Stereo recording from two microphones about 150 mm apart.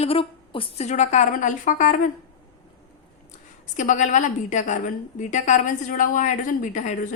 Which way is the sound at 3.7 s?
55° left (ahead or behind).